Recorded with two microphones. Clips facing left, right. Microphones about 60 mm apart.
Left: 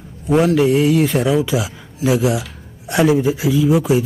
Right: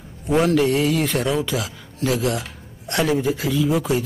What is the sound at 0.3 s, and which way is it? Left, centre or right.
Speech, centre.